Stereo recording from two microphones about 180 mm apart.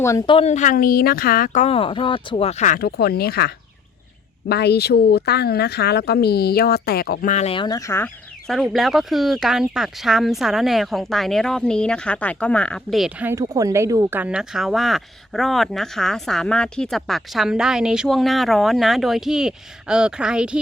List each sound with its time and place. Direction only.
0.0 s speech: 15° left (ahead or behind)
0.3 s speech: 35° left (ahead or behind)
7.5 s speech: 25° left (ahead or behind)
8.4 s speech: centre (ahead or behind)
13.3 s speech: 20° right (ahead or behind); by 20.6 s 5° right (ahead or behind)